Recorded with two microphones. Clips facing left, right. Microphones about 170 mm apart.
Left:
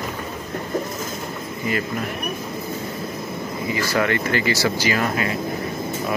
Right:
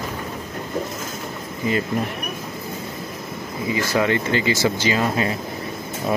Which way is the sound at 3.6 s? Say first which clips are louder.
Right 2 dB; 20° right (ahead or behind).